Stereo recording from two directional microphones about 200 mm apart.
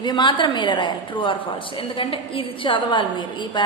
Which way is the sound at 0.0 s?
25° left (ahead or behind).